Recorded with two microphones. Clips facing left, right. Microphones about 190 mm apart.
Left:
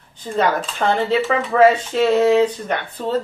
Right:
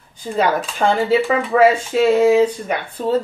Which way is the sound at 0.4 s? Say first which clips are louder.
Right 1 dB; 10° right (ahead or behind).